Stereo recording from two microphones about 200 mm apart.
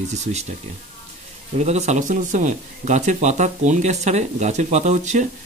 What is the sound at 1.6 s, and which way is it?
Speech, 35° right (ahead or behind).